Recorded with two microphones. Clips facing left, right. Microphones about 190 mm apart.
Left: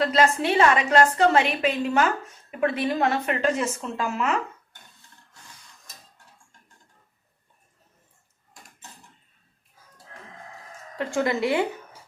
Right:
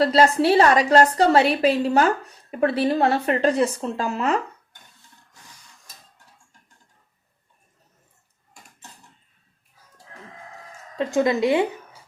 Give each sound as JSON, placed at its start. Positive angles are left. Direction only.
{"t": 0.0, "sound": "a woman's voice", "side_deg": -35}
{"t": 10.9, "sound": "speech", "side_deg": -20}